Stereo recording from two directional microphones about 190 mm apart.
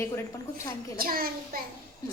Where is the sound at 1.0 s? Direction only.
50° right (ahead or behind).